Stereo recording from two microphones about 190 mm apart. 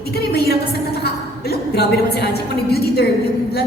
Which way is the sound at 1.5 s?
55° left (ahead or behind).